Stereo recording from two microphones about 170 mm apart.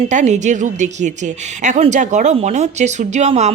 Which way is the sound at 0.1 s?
45° right (ahead or behind).